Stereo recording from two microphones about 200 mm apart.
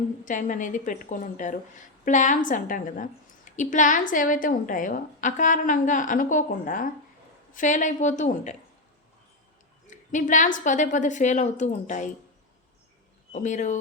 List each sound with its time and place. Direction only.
0.3 s a woman's voice: 40° left (ahead or behind)
9.8 s a woman's voice: 40° left (ahead or behind)
13.3 s a woman's voice: 40° left (ahead or behind)